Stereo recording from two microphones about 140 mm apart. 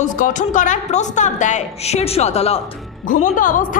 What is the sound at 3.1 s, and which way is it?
Speech, 70° left (ahead or behind).